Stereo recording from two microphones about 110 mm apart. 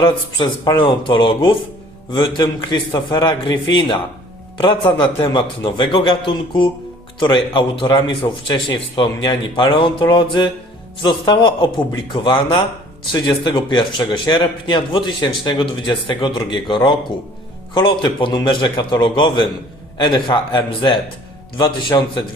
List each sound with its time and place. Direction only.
0.0 s a man's voice: 45° left (ahead or behind)
8.2 s speech: 35° left (ahead or behind)
9.0 s a man's voice: 45° left (ahead or behind)